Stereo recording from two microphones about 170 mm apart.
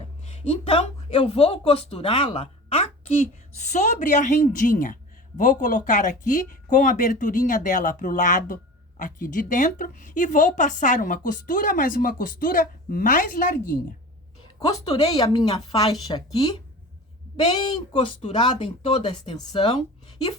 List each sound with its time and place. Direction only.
0.3 s a woman's voice: 35° left (ahead or behind); by 13.7 s 55° left (ahead or behind)
15.0 s speech: 30° left (ahead or behind)
17.9 s speech: 30° left (ahead or behind)